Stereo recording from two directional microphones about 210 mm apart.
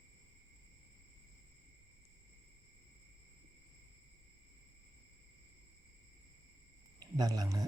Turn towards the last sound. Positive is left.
turn(degrees=-15)  # may be behind; listen again after turning